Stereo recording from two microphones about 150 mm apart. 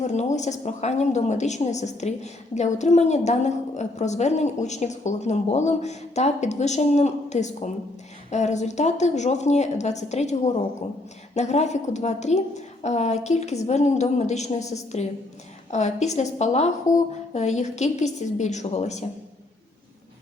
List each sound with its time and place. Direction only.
0.0 s a woman's voice: 50° left (ahead or behind)